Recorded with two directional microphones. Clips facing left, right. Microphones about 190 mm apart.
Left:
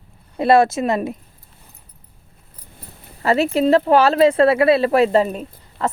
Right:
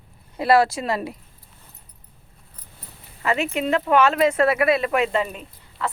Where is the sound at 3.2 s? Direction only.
35° left (ahead or behind).